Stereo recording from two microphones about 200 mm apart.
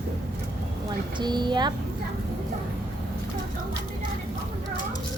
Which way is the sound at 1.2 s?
20° right (ahead or behind).